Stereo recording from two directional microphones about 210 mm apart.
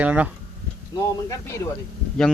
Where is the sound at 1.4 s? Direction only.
15° left (ahead or behind).